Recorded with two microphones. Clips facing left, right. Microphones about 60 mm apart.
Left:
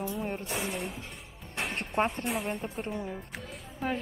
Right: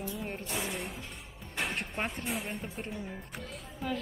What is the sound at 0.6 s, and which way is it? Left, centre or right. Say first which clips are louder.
Speech: left 3 dB; centre.